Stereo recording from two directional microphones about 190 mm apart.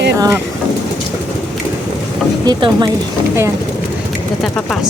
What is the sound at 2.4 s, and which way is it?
Speech, 25° right (ahead or behind).